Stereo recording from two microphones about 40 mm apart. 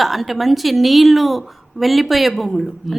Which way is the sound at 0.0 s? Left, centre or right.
Centre.